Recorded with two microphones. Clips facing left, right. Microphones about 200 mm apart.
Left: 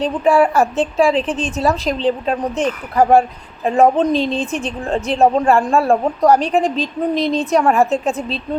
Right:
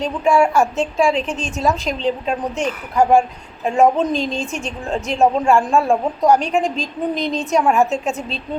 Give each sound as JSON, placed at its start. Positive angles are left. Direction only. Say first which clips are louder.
{"t": 0.3, "sound": "a woman's voice", "louder": "left 1 dB", "side_deg": 0}
{"t": 0.6, "sound": "a woman's voice", "louder": "left 2 dB", "side_deg": 35}
{"t": 1.4, "sound": "a woman's voice", "louder": "left 2 dB", "side_deg": 0}
{"t": 4.1, "sound": "a woman's voice", "louder": "left 4 dB", "side_deg": 35}
{"t": 4.5, "sound": "a woman's voice", "louder": "left 3 dB", "side_deg": 0}